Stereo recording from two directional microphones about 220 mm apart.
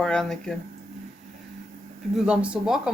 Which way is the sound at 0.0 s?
Centre (ahead or behind).